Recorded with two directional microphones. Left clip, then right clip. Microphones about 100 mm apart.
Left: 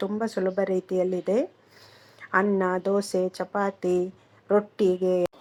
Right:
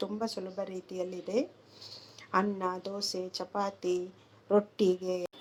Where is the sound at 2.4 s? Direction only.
30° left (ahead or behind).